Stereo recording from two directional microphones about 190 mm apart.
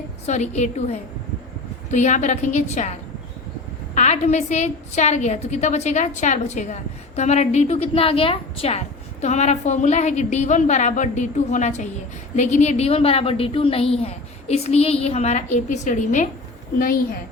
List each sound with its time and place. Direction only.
0.3 s a woman's voice: 35° left (ahead or behind)
3.9 s a woman's voice: 35° left (ahead or behind)